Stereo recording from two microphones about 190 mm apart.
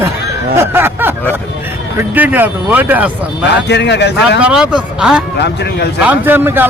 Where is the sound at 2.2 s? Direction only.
10° right (ahead or behind).